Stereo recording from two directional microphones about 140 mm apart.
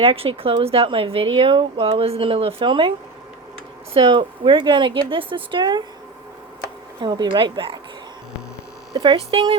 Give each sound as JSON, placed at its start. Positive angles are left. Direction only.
{"t": 0.0, "sound": "speech", "side_deg": -45}
{"t": 3.9, "sound": "speech", "side_deg": -35}
{"t": 7.0, "sound": "speech", "side_deg": -30}
{"t": 8.9, "sound": "speech", "side_deg": -30}
{"t": 9.1, "sound": "speech", "side_deg": -45}